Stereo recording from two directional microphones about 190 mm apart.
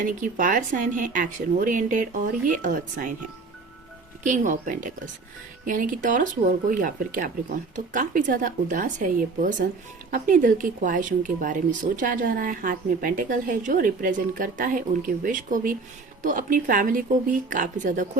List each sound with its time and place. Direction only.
0.0 s speech: 45° right (ahead or behind)
4.2 s speech: 40° right (ahead or behind)